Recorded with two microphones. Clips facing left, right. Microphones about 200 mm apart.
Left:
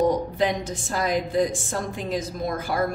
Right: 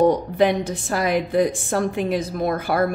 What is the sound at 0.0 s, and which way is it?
A woman's voice, 65° right (ahead or behind).